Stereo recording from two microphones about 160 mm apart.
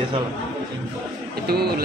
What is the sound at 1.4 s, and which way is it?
Speech, 80° right.